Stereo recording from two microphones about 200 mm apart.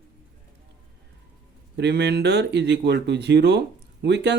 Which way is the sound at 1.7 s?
60° right (ahead or behind).